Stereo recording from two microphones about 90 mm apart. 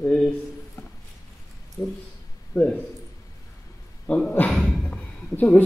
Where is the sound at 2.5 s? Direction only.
10° left (ahead or behind).